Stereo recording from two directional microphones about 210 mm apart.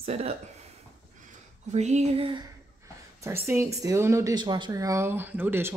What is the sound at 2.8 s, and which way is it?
Speech, 15° right (ahead or behind).